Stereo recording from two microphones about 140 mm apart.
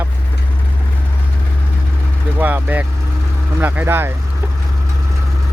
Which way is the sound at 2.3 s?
15° right (ahead or behind).